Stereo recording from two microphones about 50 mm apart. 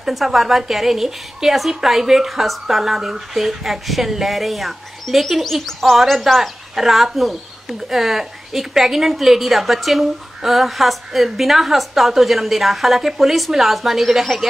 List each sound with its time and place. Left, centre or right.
0.0 s a woman's voice: centre